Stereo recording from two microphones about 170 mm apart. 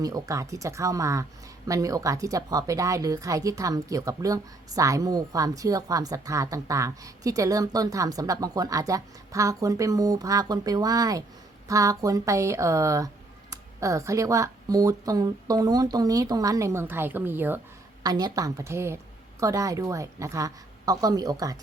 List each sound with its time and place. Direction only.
0.0 s a woman's voice: 20° right (ahead or behind)
18.0 s a woman's voice: 25° right (ahead or behind)